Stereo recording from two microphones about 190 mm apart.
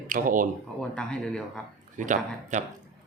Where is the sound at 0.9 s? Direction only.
5° left (ahead or behind).